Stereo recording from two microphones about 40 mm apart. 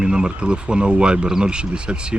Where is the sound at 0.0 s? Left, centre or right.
Centre.